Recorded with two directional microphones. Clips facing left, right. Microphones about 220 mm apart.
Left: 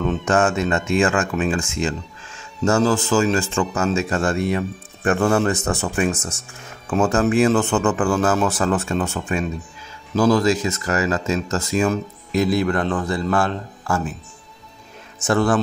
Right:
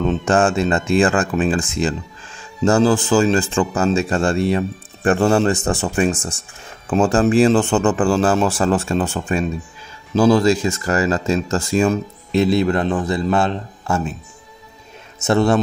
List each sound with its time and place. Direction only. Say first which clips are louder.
0.2 s speech: right 1 dB; 30° right (ahead or behind)
15.2 s speech: right 3 dB; 25° right (ahead or behind)